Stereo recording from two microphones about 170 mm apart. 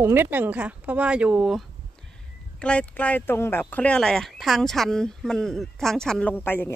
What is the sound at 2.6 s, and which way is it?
Speech, 5° left (ahead or behind).